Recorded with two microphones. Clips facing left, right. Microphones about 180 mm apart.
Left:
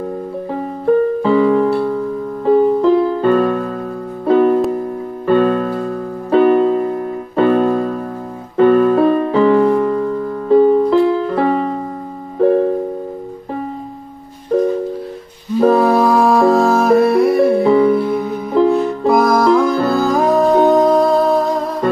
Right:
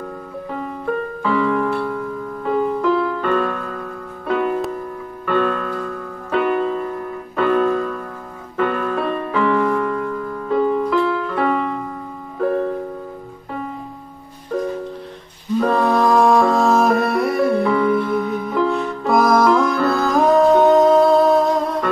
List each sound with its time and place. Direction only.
0.5 s piano: 35° left (ahead or behind)
4.3 s music: 35° left (ahead or behind)
15.8 s music: 5° left (ahead or behind)
17.7 s music: 35° left (ahead or behind)
19.0 s music: centre (ahead or behind)
19.7 s music: 35° left (ahead or behind)
20.0 s music: centre (ahead or behind)